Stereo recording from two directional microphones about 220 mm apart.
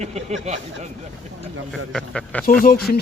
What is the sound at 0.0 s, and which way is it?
Speech, 30° right (ahead or behind).